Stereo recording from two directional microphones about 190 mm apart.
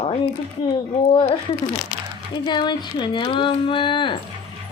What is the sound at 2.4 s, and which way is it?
A woman's voice, 25° left (ahead or behind).